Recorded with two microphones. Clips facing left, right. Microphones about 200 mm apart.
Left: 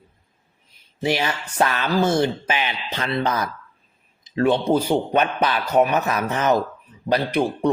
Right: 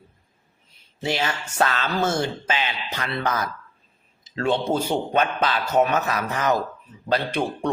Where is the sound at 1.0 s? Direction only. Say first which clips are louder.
Left 3 dB; 20° left (ahead or behind).